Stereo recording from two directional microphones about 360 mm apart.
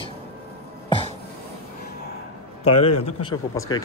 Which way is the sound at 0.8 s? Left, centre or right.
Centre.